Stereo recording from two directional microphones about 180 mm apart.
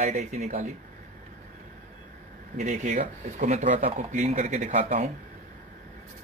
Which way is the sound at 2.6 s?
40° right (ahead or behind).